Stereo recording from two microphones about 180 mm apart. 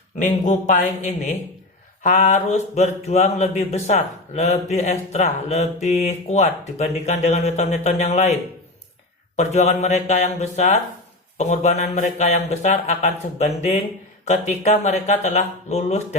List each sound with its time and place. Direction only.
0.2 s speech: 45° left (ahead or behind)